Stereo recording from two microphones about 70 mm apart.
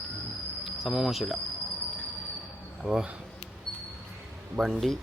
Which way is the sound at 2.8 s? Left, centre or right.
Centre.